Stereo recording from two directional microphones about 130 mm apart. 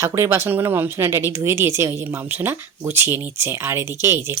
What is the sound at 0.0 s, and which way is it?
Speech, 20° right (ahead or behind).